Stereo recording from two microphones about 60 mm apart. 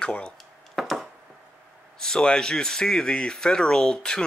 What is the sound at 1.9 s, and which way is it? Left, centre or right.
Speech, centre.